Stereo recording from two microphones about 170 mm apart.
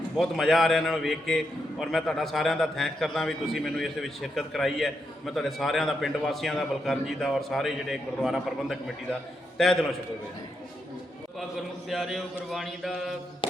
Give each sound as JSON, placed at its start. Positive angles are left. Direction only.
{"t": 0.2, "sound": "a man's voice", "side_deg": 0}
{"t": 11.9, "sound": "a man's voice", "side_deg": 0}
{"t": 13.4, "sound": "music", "side_deg": 30}